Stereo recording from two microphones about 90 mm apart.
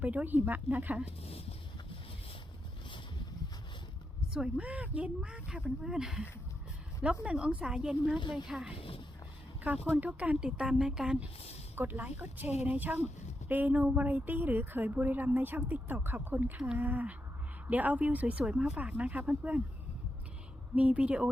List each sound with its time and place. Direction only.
0.0 s a woman's voice: 15° right (ahead or behind)
1.2 s speech: 90° left
4.4 s speech: 15° right (ahead or behind)
8.7 s speech: 90° left
9.6 s speech: 15° right (ahead or behind)
11.8 s a woman's voice: 20° right (ahead or behind)
20.7 s speech: 15° right (ahead or behind)